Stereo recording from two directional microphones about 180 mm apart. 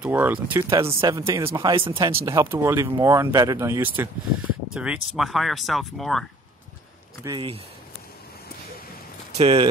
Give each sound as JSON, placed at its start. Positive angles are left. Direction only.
{"t": 0.0, "sound": "speech", "side_deg": -10}
{"t": 1.6, "sound": "speech", "side_deg": -25}
{"t": 5.1, "sound": "speech", "side_deg": 0}
{"t": 7.3, "sound": "speech", "side_deg": -35}
{"t": 9.4, "sound": "speech", "side_deg": -30}